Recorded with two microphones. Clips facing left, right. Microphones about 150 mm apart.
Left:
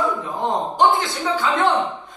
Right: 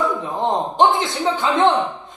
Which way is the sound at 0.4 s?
25° right (ahead or behind).